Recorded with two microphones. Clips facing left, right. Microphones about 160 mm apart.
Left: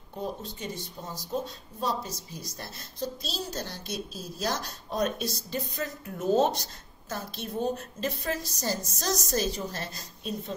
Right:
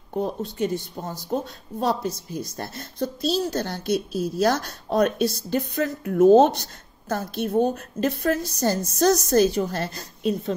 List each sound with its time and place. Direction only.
0.2 s speech: 60° right (ahead or behind)